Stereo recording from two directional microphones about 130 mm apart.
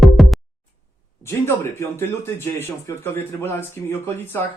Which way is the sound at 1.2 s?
20° left (ahead or behind).